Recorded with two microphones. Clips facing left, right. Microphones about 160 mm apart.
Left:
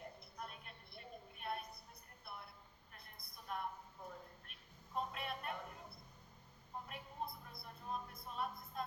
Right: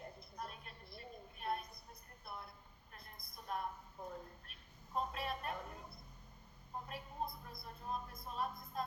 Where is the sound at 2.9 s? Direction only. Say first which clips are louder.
Right 3 dB; 40° right (ahead or behind).